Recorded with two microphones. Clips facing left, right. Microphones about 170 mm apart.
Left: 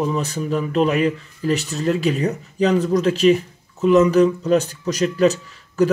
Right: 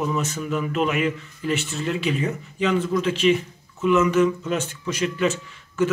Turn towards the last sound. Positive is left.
turn(degrees=40)  # may be behind; listen again after turning